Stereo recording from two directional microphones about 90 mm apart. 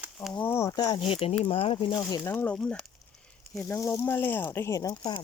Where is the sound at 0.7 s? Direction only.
50° left (ahead or behind).